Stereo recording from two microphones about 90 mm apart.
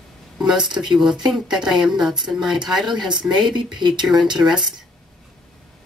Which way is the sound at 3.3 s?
60° right (ahead or behind).